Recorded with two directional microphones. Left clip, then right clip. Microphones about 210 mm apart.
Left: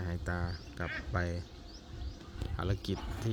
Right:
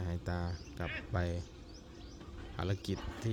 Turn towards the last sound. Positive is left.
turn(degrees=5)  # may be behind; listen again after turning